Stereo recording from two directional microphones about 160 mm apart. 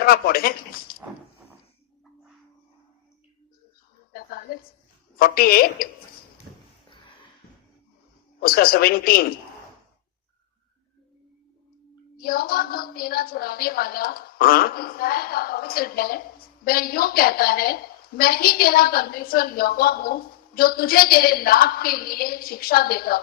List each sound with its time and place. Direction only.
0.0 s a woman's voice: 70° left (ahead or behind)
4.1 s a sound: 70° left (ahead or behind)
5.1 s a woman's voice: 70° left (ahead or behind)
8.4 s a woman's voice: 70° left (ahead or behind)
12.1 s a woman's voice: 70° left (ahead or behind)